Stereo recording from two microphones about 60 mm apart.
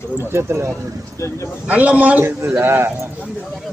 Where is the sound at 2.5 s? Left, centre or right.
Right.